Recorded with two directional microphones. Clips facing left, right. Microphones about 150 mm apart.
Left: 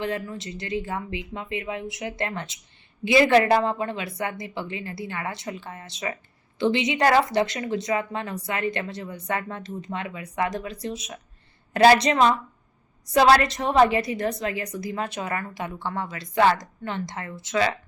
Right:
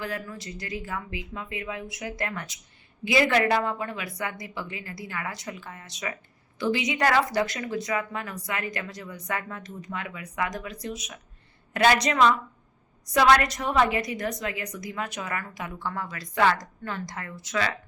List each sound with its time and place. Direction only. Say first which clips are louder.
0.0 s a woman's voice: left 5 dB; 25° left (ahead or behind)